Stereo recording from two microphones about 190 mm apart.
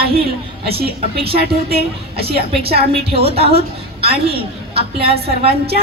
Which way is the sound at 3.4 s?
30° right (ahead or behind).